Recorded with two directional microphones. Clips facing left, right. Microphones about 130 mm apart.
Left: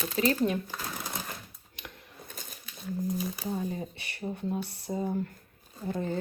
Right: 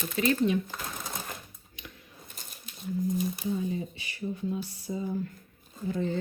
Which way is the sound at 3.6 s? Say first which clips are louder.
Right 2 dB; 50° left (ahead or behind).